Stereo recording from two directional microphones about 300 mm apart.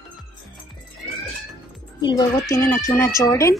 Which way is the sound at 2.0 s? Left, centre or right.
Centre.